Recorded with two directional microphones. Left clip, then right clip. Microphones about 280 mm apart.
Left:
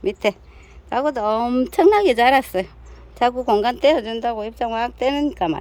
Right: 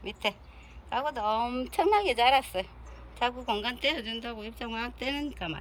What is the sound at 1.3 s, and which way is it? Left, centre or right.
Speech, left.